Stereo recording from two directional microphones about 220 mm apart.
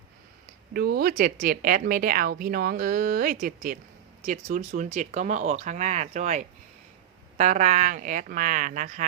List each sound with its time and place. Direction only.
0.7 s speech: 45° right (ahead or behind)